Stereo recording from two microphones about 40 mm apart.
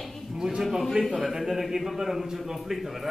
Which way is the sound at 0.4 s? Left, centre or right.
Centre.